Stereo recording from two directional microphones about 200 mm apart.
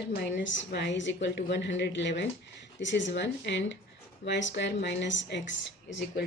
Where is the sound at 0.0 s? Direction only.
60° left (ahead or behind).